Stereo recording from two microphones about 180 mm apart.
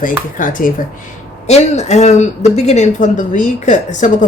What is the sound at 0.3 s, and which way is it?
A woman's voice, 50° left (ahead or behind).